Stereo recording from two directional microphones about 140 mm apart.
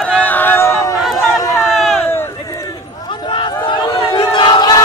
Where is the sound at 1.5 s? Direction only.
Centre (ahead or behind).